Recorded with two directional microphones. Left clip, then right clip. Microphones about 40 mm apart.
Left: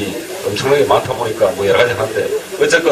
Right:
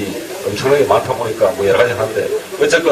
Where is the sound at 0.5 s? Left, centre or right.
Left.